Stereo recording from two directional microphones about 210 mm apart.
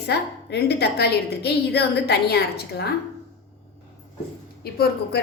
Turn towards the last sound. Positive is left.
turn(degrees=50)  # may be behind; listen again after turning